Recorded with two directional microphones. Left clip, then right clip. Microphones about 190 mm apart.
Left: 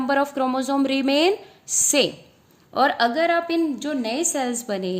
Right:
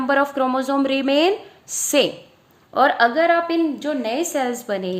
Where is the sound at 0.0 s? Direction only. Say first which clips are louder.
Right 3 dB; 20° left (ahead or behind).